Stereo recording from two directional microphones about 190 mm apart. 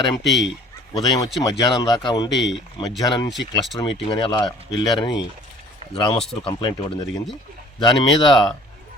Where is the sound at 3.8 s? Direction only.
25° left (ahead or behind).